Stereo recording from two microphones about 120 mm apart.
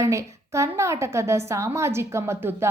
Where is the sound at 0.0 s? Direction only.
25° right (ahead or behind).